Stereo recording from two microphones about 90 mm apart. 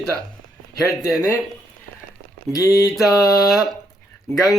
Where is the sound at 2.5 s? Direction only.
45° left (ahead or behind).